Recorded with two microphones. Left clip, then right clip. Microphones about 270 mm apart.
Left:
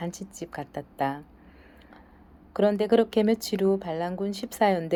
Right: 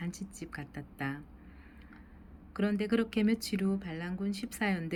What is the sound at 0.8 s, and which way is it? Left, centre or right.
Speech, left.